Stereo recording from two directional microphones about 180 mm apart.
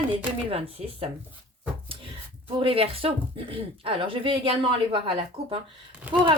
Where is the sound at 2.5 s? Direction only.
30° right (ahead or behind).